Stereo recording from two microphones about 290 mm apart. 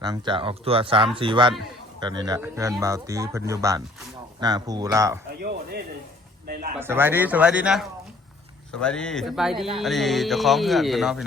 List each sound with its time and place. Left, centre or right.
0.0 s speech: centre
5.4 s speech: right
6.7 s speech: centre